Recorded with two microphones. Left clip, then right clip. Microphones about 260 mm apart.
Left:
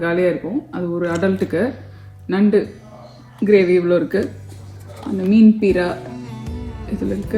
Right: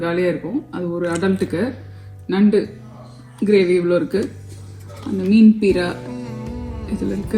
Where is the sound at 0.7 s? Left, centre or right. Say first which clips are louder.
Left 1 dB; right.